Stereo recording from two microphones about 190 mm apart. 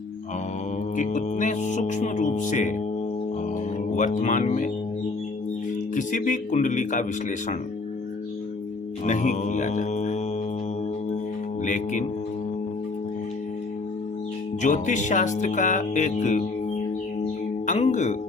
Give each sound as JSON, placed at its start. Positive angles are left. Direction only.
{"t": 0.9, "sound": "speech", "side_deg": 40}
{"t": 3.9, "sound": "speech", "side_deg": 40}
{"t": 5.9, "sound": "speech", "side_deg": 40}
{"t": 9.0, "sound": "speech", "side_deg": 40}
{"t": 11.6, "sound": "speech", "side_deg": 40}
{"t": 14.6, "sound": "speech", "side_deg": 40}
{"t": 17.7, "sound": "music", "side_deg": 40}